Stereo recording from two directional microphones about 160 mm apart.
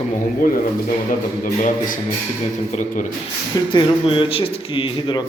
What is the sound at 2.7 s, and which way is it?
Speech, 55° left (ahead or behind).